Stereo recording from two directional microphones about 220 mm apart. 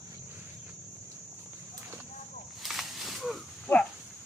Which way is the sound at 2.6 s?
Centre (ahead or behind).